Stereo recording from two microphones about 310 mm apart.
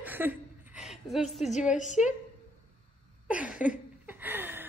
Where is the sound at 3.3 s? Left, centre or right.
Centre.